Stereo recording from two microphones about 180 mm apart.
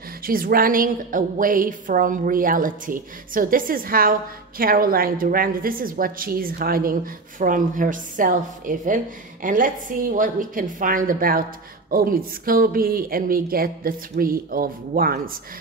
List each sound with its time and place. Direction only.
0.2 s a woman's voice: 55° right (ahead or behind)